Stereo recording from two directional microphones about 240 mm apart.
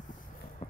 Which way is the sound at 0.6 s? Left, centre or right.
Left.